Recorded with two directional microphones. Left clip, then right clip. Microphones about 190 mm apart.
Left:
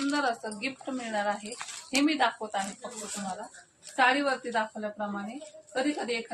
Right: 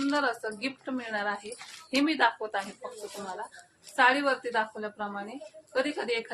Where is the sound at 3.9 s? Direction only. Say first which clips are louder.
Right 1 dB; 15° right (ahead or behind).